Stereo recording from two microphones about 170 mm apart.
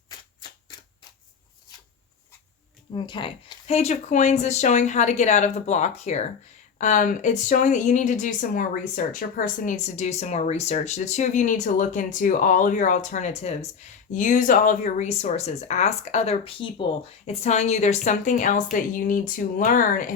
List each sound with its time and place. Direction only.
2.9 s speech: 30° left (ahead or behind); by 20.1 s 50° left (ahead or behind)